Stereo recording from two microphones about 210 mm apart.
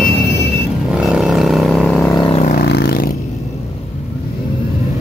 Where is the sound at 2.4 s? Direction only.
45° left (ahead or behind).